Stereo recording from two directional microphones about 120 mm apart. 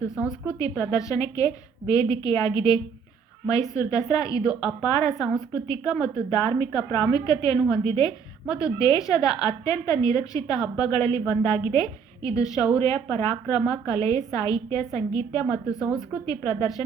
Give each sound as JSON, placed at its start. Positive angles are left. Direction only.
{"t": 0.2, "sound": "a woman's voice", "side_deg": -10}
{"t": 0.8, "sound": "a woman's voice", "side_deg": 25}
{"t": 5.1, "sound": "a woman's voice", "side_deg": -5}
{"t": 5.6, "sound": "a woman's voice", "side_deg": 30}